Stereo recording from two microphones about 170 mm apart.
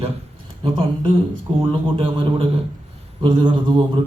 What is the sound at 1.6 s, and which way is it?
A man's voice, 30° right (ahead or behind).